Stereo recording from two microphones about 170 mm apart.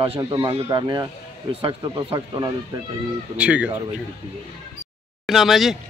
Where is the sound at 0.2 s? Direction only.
25° right (ahead or behind).